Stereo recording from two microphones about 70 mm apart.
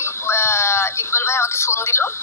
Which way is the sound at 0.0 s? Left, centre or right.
Left.